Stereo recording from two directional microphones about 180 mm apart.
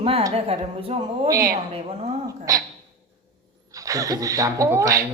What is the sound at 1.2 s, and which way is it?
Speech, 20° right (ahead or behind).